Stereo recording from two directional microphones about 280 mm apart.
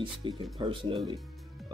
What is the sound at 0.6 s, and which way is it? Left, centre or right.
Speech, centre.